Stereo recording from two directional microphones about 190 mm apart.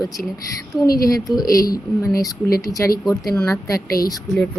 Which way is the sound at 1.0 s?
20° left (ahead or behind).